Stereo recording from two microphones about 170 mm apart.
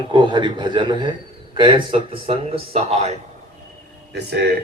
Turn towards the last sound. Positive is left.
turn(degrees=-75)  # may be behind; listen again after turning